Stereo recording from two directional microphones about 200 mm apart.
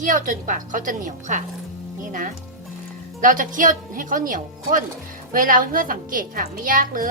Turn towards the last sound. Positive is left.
turn(degrees=-45)  # may be behind; listen again after turning